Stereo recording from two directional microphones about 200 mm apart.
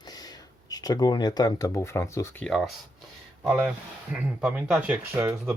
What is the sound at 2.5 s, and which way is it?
Speech, centre (ahead or behind).